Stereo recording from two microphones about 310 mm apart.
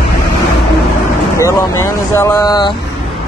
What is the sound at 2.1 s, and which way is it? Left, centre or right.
Speech, centre.